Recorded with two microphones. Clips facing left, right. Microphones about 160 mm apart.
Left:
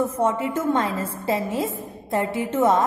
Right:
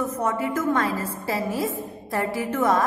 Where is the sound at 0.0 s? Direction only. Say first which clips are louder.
Left 3 dB; 30° left (ahead or behind).